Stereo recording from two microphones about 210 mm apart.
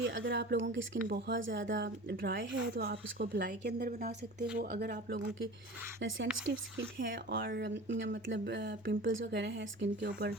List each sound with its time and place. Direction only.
0.0 s speech: 65° right (ahead or behind)
2.7 s a woman's voice: 45° right (ahead or behind)
6.0 s speech: 65° right (ahead or behind)
6.5 s a woman's voice: 50° right (ahead or behind)